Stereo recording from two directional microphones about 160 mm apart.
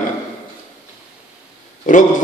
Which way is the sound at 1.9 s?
55° left (ahead or behind).